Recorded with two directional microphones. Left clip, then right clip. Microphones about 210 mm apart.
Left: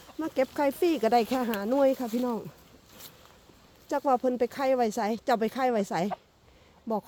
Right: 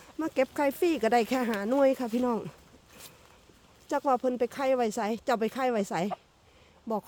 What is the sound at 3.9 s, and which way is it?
Speech, centre (ahead or behind).